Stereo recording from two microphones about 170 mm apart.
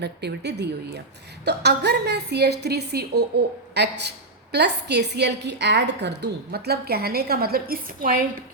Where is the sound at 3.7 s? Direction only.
80° right; by 8.1 s 60° right (ahead or behind).